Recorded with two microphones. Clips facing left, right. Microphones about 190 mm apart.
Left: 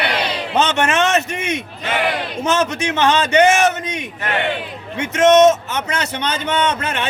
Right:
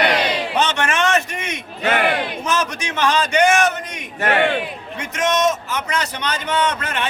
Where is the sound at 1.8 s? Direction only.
55° right (ahead or behind).